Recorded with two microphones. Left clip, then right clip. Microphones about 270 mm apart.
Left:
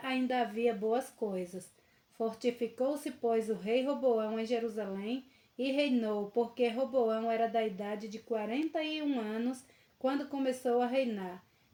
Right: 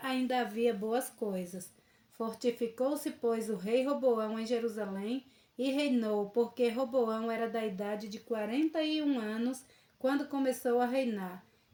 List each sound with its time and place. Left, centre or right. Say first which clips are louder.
0.0 s a woman's voice: even; right